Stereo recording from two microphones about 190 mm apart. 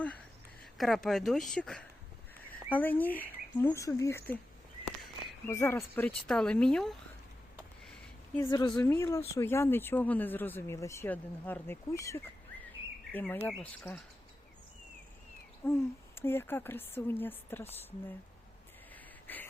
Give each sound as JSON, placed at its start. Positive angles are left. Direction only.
{"t": 0.6, "sound": "speech", "side_deg": 0}
{"t": 5.5, "sound": "speech", "side_deg": 15}
{"t": 8.4, "sound": "speech", "side_deg": 20}
{"t": 15.6, "sound": "speech", "side_deg": 10}
{"t": 19.3, "sound": "speech", "side_deg": 10}